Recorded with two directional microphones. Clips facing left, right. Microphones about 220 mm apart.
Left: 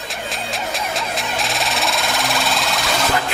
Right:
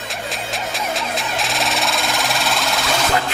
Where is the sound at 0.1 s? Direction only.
Centre (ahead or behind).